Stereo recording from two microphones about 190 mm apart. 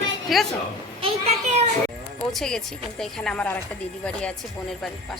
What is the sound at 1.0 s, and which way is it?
Speech, 35° right (ahead or behind).